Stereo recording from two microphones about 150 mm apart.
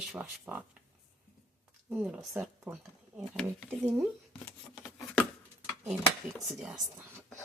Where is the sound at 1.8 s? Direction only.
10° right (ahead or behind).